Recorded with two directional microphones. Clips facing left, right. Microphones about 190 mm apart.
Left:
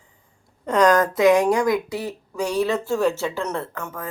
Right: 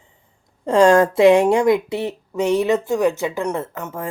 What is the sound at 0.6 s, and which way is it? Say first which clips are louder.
Speech: right 4 dB; 30° right (ahead or behind).